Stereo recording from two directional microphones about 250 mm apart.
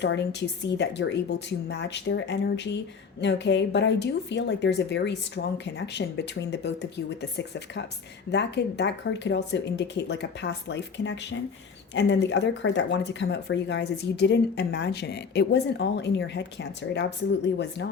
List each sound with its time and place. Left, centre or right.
0.0 s speech: left